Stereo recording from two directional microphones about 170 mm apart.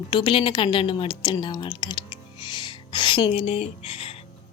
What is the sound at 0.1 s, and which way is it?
A woman's voice, 30° left (ahead or behind).